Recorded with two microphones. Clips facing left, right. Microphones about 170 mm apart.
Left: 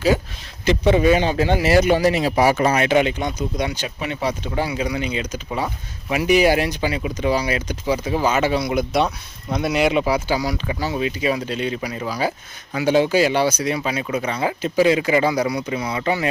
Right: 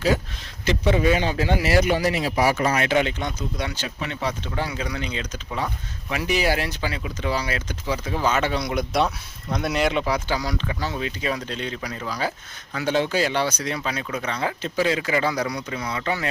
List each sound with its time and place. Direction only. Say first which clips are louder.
0.6 s speech: left 4 dB; 20° left (ahead or behind)